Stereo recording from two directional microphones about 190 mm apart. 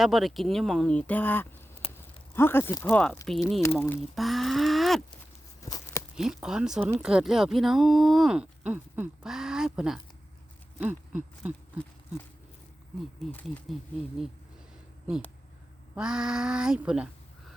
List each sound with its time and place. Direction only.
0.0 s speech: centre (ahead or behind)
1.8 s a sound: 30° left (ahead or behind)
2.3 s speech: 10° left (ahead or behind)
5.6 s a sound: 20° left (ahead or behind)
6.1 s speech: centre (ahead or behind)
10.8 s owl: 5° right (ahead or behind)
13.3 s speech: 5° left (ahead or behind)
16.0 s speech: 5° right (ahead or behind)